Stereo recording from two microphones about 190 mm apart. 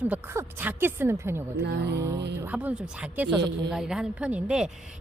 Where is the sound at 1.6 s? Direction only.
60° right (ahead or behind).